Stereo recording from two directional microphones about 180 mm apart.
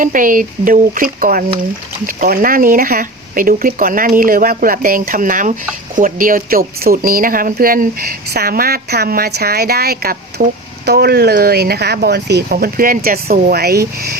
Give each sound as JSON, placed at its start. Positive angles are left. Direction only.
{"t": 0.0, "sound": "speech", "side_deg": -50}